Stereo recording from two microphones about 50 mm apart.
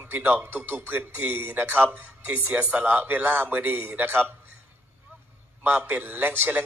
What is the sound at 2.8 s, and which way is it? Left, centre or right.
Speech, right.